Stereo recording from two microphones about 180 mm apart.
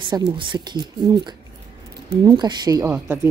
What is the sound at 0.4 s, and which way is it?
A woman's voice, 25° right (ahead or behind).